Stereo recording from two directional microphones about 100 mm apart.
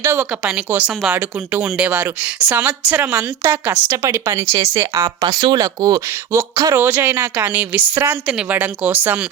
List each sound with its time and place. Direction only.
0.0 s a woman's voice: 25° right (ahead or behind)
0.3 s a woman's voice: 10° right (ahead or behind); by 5.1 s 30° right (ahead or behind)
5.2 s a woman's voice: 50° right (ahead or behind); by 9.2 s 15° right (ahead or behind)